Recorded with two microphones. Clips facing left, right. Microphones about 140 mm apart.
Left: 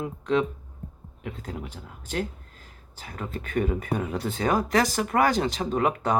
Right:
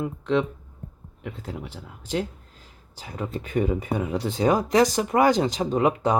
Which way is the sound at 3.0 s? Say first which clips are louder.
Right 3 dB; 15° right (ahead or behind).